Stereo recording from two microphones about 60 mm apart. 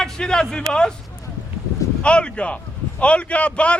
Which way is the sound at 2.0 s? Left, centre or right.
Centre.